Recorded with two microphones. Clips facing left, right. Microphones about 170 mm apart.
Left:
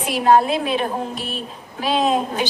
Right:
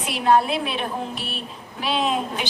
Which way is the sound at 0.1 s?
40° left (ahead or behind).